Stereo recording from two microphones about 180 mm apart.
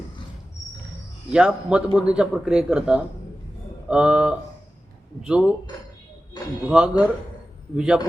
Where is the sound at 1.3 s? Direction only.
5° right (ahead or behind).